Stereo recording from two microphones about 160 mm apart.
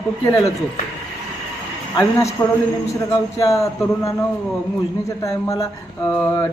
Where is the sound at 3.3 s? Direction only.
20° left (ahead or behind).